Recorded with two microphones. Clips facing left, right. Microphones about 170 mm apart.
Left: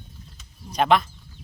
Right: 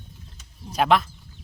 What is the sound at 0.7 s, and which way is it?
Speech, centre (ahead or behind).